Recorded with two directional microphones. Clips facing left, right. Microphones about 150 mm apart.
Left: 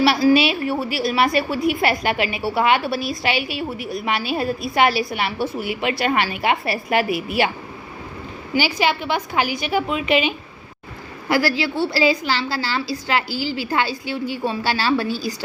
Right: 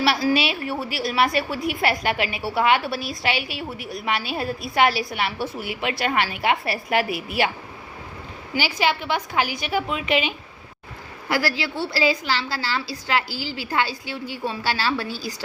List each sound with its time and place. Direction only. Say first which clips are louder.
0.0 s a woman's voice: left 5 dB; 15° left (ahead or behind)
8.5 s a woman's voice: left 3 dB; 15° left (ahead or behind)